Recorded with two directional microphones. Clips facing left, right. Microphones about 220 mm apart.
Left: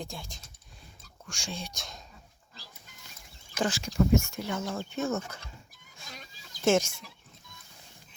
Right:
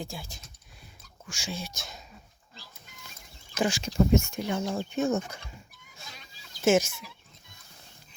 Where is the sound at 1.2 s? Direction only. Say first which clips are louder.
Right 2 dB; 5° right (ahead or behind).